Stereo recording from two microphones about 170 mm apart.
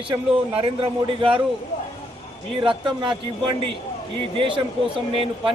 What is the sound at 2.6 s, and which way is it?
A man's voice, 30° right (ahead or behind).